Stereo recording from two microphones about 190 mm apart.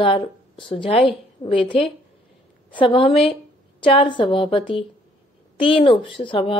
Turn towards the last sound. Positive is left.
turn(degrees=25)  # may be behind; listen again after turning